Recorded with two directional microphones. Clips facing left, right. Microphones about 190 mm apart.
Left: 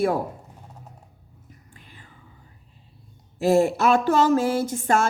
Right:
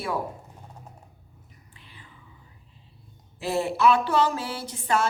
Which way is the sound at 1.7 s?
45° left (ahead or behind).